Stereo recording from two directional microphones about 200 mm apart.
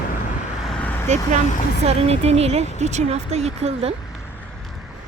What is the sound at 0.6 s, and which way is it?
Vehicle, 5° left (ahead or behind).